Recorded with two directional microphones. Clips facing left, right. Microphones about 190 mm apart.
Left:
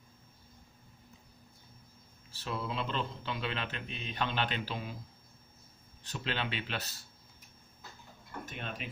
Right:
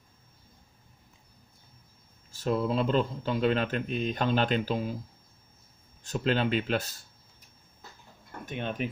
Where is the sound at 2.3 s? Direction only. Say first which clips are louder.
Right 10 dB; 45° right (ahead or behind).